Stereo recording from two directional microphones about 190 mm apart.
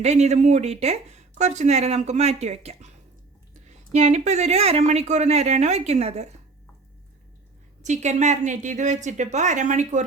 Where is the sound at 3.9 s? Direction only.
35° right (ahead or behind).